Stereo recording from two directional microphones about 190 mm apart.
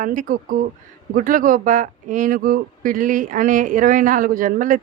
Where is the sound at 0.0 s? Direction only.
45° right (ahead or behind).